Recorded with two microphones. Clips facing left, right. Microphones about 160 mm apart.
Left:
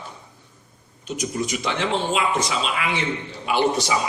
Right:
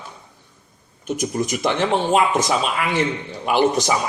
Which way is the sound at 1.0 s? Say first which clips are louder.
Right 4 dB; 50° right (ahead or behind).